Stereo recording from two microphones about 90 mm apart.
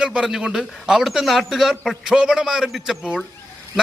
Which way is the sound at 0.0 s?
10° right (ahead or behind).